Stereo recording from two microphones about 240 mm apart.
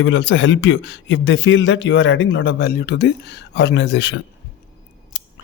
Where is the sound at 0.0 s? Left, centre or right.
Left.